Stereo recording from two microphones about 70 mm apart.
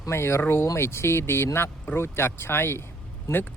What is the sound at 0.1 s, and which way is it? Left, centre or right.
Speech, left.